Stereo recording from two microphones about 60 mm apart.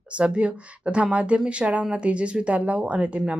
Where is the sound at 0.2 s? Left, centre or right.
Right.